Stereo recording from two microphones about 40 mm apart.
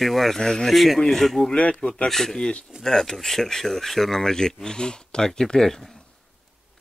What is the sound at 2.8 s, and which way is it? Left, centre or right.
Speech, centre.